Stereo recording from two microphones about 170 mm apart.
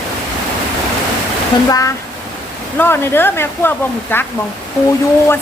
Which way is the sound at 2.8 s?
15° left (ahead or behind).